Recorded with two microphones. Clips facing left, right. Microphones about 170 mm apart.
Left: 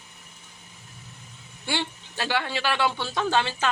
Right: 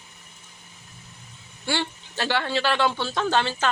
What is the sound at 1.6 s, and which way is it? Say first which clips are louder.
Speech: right 2 dB; 15° left (ahead or behind).